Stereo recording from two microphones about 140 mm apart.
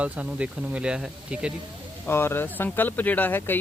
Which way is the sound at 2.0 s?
15° left (ahead or behind).